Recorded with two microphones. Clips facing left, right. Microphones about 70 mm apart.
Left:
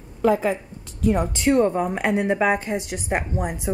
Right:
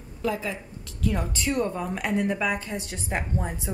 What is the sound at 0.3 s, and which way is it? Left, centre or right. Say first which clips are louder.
Speech: left 9 dB; left.